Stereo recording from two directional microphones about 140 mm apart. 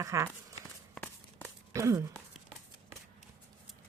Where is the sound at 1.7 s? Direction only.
20° right (ahead or behind).